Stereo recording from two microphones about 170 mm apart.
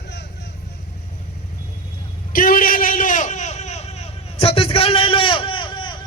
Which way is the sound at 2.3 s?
55° left (ahead or behind).